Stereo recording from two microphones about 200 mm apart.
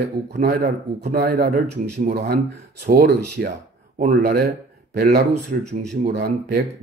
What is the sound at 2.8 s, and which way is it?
A man's voice, 50° right (ahead or behind).